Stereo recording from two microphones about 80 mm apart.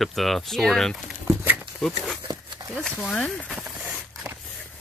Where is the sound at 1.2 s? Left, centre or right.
Right.